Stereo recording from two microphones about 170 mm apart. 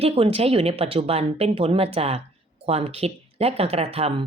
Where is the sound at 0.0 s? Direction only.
35° right (ahead or behind).